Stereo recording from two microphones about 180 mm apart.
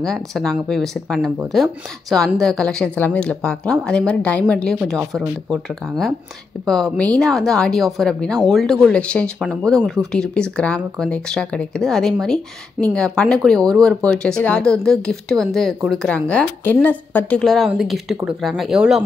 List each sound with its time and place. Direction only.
0.0 s speech: centre (ahead or behind)
6.6 s speech: 5° left (ahead or behind)